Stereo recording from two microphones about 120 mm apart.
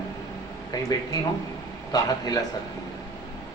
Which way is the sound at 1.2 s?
35° left (ahead or behind).